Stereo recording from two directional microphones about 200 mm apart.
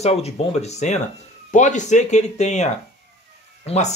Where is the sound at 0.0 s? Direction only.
30° left (ahead or behind).